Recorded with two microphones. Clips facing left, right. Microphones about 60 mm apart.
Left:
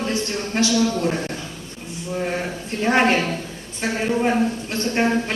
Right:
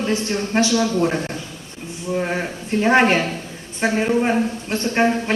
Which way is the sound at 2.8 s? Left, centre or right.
Right.